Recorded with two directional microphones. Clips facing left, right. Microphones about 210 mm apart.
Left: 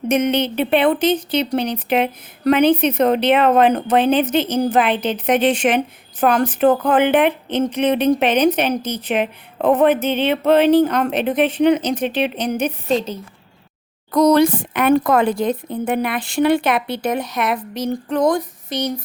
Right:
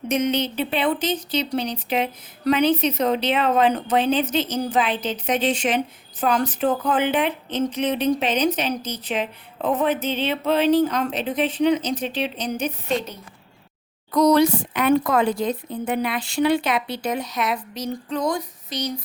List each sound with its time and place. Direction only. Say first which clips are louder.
0.1 s speech: left 4 dB; 60° left (ahead or behind)
14.1 s speech: left 3 dB; 50° left (ahead or behind)